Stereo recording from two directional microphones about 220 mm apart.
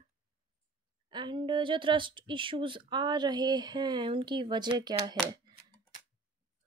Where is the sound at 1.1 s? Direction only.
20° right (ahead or behind).